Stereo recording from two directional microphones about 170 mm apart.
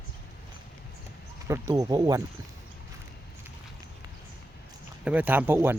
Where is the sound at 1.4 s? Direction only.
15° right (ahead or behind).